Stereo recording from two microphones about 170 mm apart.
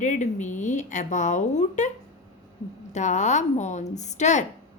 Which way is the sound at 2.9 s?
45° left (ahead or behind).